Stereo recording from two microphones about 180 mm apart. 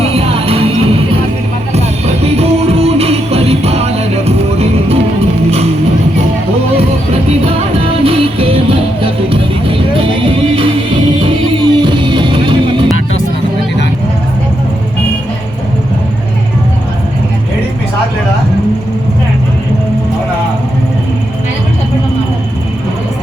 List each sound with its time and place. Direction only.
0.0 s music: 35° right (ahead or behind)
7.9 s music: 30° right (ahead or behind)